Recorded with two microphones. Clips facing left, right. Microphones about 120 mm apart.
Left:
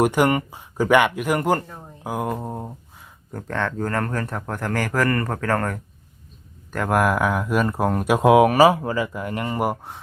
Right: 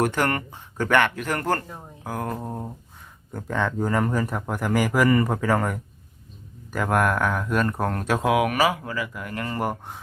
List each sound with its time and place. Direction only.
0.0 s speech: 10° left (ahead or behind)
1.6 s speech: 5° right (ahead or behind)
2.0 s speech: 10° left (ahead or behind)
3.3 s speech: 10° right (ahead or behind); by 8.2 s 10° left (ahead or behind)
8.2 s speech: 25° left (ahead or behind)